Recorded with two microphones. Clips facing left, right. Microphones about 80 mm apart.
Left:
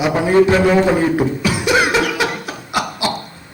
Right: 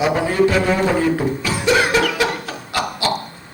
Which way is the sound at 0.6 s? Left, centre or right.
Centre.